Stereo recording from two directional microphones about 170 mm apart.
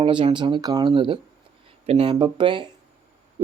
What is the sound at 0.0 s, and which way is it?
Speech, 30° right (ahead or behind).